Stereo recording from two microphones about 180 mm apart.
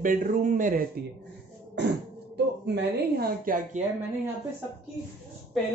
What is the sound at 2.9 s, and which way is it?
Speech, 55° right (ahead or behind).